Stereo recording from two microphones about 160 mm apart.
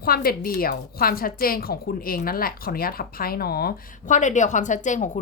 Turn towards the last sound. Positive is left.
turn(degrees=50)  # may be behind; listen again after turning